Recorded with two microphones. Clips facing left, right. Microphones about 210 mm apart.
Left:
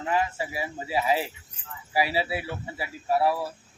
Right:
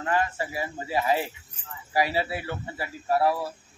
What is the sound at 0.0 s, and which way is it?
Speech, 5° left (ahead or behind).